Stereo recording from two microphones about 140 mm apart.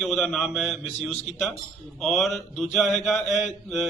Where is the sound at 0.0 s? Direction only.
Centre (ahead or behind).